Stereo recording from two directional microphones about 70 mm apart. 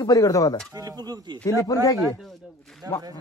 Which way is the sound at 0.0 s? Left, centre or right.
Left.